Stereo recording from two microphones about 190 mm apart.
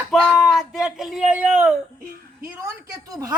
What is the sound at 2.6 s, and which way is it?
Speech, 20° right (ahead or behind).